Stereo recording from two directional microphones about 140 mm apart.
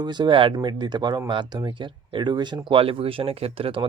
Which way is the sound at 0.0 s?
30° right (ahead or behind).